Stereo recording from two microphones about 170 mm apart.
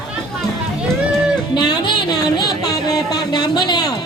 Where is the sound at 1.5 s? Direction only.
25° left (ahead or behind).